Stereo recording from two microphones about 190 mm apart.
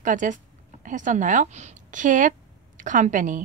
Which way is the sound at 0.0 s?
40° right (ahead or behind).